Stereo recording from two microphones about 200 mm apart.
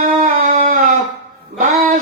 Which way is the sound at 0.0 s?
40° right (ahead or behind).